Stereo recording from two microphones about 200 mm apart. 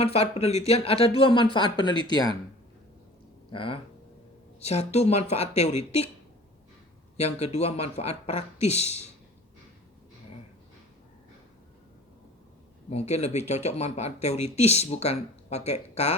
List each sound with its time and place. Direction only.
0.0 s speech: 30° left (ahead or behind)
3.5 s speech: 25° left (ahead or behind)
7.2 s speech: 30° left (ahead or behind)
12.9 s speech: 35° left (ahead or behind)